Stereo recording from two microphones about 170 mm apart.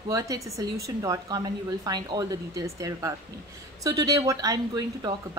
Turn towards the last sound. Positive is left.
turn(degrees=-20)  # may be behind; listen again after turning